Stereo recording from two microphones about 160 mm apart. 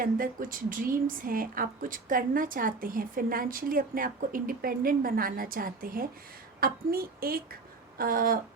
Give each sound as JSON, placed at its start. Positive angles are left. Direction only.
{"t": 0.0, "sound": "a woman's voice", "side_deg": -60}